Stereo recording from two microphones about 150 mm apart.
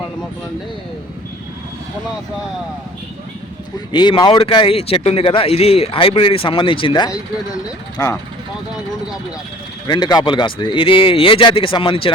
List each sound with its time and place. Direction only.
3.9 s a man's voice: 30° left (ahead or behind)
9.8 s a man's voice: 30° left (ahead or behind)